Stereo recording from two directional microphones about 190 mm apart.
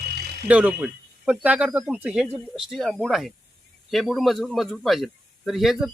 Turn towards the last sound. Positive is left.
turn(degrees=0)  # may be behind; listen again after turning